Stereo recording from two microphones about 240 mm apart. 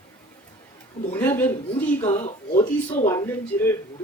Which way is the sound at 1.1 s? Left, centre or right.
Centre.